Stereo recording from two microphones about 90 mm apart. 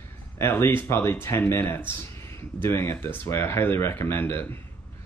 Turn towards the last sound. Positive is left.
turn(degrees=25)  # may be behind; listen again after turning